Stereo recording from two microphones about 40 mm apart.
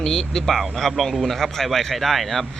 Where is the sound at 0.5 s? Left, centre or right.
Centre.